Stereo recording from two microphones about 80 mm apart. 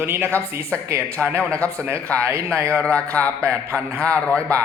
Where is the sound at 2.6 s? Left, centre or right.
Centre.